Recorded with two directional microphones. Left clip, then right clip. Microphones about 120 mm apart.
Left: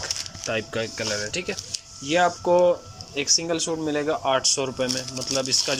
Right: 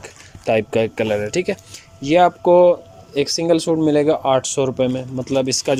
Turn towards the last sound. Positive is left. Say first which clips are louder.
# right 5 dB
turn(degrees=-50)  # may be behind; listen again after turning